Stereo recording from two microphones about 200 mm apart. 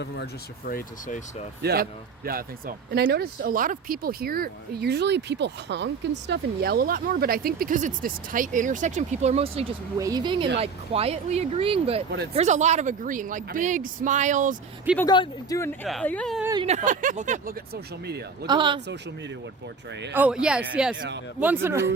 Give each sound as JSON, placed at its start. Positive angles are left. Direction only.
{"t": 0.7, "sound": "speech", "side_deg": 45}
{"t": 1.6, "sound": "speech", "side_deg": -50}
{"t": 10.0, "sound": "a man's voice", "side_deg": -20}
{"t": 14.9, "sound": "speech", "side_deg": 20}
{"t": 16.6, "sound": "a man's voice", "side_deg": -35}
{"t": 18.4, "sound": "speech", "side_deg": -25}
{"t": 20.1, "sound": "speech", "side_deg": -5}